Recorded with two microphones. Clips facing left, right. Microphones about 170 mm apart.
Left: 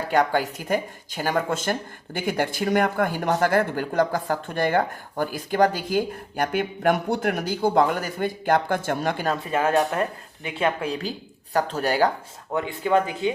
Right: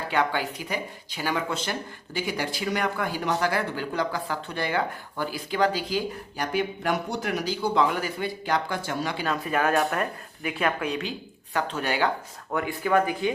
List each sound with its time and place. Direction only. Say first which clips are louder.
0.1 s speech: left 5 dB; 40° left (ahead or behind)
9.3 s speech: left 1 dB; 25° left (ahead or behind)
12.5 s speech: left 2 dB; 25° left (ahead or behind)